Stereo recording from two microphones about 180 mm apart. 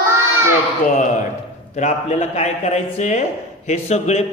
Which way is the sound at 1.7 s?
40° left (ahead or behind).